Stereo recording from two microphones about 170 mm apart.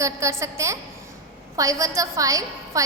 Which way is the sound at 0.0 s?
15° right (ahead or behind).